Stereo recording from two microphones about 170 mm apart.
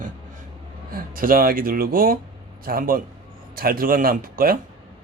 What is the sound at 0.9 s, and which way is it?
Speech, 55° right (ahead or behind).